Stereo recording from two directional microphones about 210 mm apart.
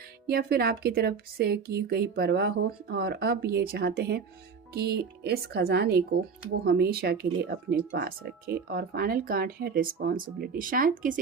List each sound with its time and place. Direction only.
0.3 s speech: 45° right (ahead or behind)